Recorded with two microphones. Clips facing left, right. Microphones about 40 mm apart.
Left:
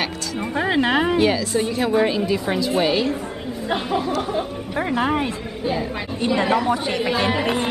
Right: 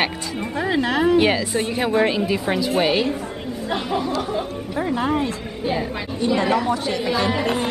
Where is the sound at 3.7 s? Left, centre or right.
Centre.